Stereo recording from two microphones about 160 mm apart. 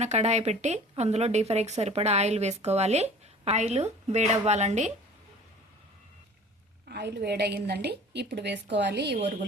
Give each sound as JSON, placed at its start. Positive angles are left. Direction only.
{"t": 0.0, "sound": "speech", "side_deg": -45}
{"t": 6.8, "sound": "a woman's voice", "side_deg": -90}